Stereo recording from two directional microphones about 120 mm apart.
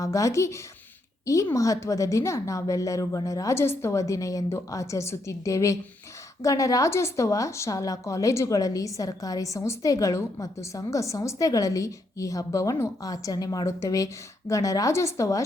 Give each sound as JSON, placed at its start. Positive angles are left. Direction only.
{"t": 0.0, "sound": "a woman's voice", "side_deg": 25}